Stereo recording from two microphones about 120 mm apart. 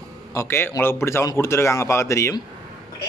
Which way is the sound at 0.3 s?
20° left (ahead or behind).